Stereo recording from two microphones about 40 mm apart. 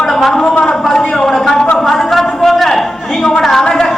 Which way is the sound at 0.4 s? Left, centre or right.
Left.